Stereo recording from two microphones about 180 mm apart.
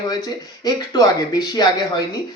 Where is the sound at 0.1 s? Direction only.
20° left (ahead or behind).